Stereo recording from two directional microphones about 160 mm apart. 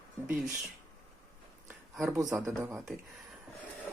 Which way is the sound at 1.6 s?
10° right (ahead or behind).